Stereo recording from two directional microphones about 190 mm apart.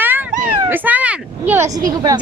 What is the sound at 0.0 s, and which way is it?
Cat, 10° right (ahead or behind).